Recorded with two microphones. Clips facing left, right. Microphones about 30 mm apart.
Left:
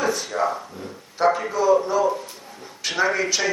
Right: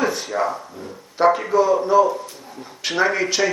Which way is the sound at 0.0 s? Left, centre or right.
Centre.